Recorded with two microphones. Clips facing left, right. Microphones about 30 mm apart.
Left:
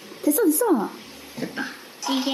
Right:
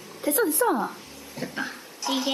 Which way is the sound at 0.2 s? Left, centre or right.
Right.